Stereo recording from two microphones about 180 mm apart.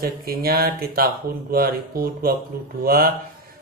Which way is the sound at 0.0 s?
55° right (ahead or behind).